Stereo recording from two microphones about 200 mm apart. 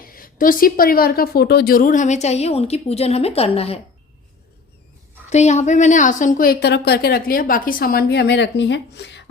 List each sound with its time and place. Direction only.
0.1 s a woman's voice: 45° left (ahead or behind)
5.3 s a woman's voice: 35° left (ahead or behind); by 9.3 s 60° left (ahead or behind)